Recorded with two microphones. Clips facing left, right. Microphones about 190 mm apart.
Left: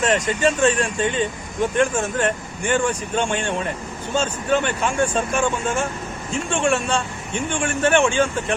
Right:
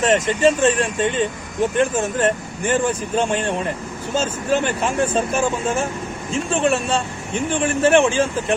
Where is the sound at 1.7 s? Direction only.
35° right (ahead or behind).